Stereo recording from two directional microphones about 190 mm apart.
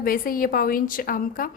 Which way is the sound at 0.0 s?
50° left (ahead or behind).